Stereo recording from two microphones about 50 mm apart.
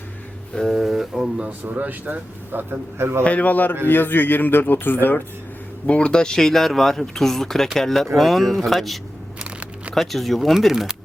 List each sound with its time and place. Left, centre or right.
0.5 s speech: centre
0.8 s speech: centre
1.5 s speech: right
3.2 s speech: left
5.8 s speech: left; by 9.0 s centre
9.4 s a sound: right
9.9 s speech: centre